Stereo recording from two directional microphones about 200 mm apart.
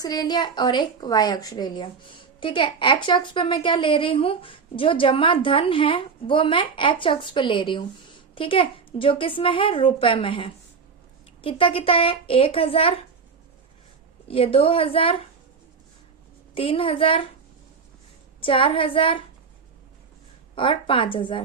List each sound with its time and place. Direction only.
0.0 s a woman's voice: 20° left (ahead or behind)
14.3 s a woman's voice: 30° left (ahead or behind)
16.6 s a woman's voice: 25° left (ahead or behind)
18.3 s a woman's voice: 25° left (ahead or behind)
20.6 s a woman's voice: 25° left (ahead or behind)